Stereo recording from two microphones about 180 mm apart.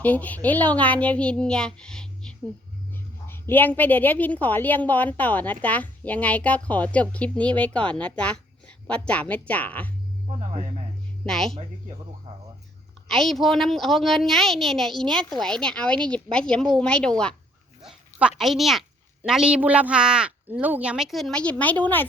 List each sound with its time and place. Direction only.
0.0 s a woman's voice: 10° left (ahead or behind)
11.3 s a woman's voice: centre (ahead or behind)
13.1 s a woman's voice: centre (ahead or behind)